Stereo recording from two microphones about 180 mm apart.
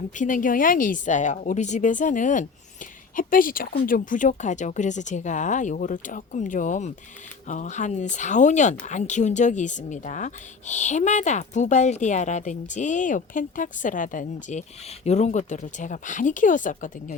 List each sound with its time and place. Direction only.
0.1 s speech: 45° left (ahead or behind)